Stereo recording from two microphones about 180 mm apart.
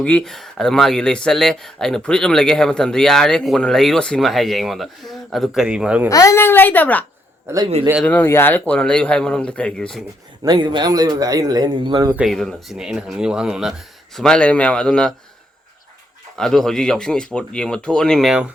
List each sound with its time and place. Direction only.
0.0 s speech: 5° left (ahead or behind)
6.1 s speech: 20° left (ahead or behind)
7.4 s a man's voice: 20° right (ahead or behind)
8.0 s speech: 10° left (ahead or behind)
10.4 s speech: 25° right (ahead or behind)
12.1 s speech: centre (ahead or behind)
16.4 s speech: 5° left (ahead or behind)